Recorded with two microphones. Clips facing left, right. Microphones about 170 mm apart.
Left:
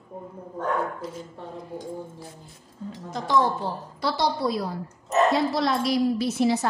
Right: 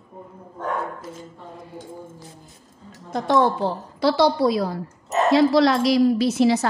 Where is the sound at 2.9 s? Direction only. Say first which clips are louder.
Right 4 dB; 55° right (ahead or behind); by 6.6 s 90° right.